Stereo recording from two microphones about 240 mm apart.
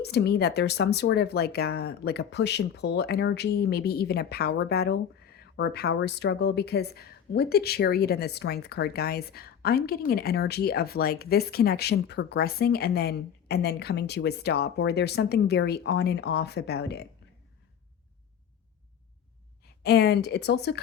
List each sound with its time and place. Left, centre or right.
0.0 s speech: left
19.8 s speech: left